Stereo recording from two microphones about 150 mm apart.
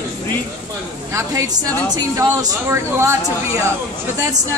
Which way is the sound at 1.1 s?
25° right (ahead or behind).